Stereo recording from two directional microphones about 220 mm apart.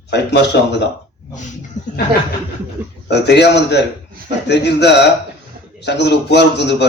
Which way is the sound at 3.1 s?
50° left (ahead or behind).